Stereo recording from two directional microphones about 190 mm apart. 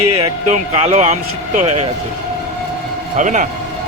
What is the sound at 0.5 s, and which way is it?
A man's voice, 35° right (ahead or behind).